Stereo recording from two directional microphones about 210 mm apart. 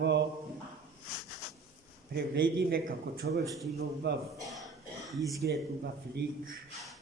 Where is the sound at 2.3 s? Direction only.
45° right (ahead or behind).